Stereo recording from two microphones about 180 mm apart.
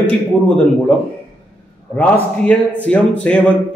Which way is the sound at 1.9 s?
10° left (ahead or behind).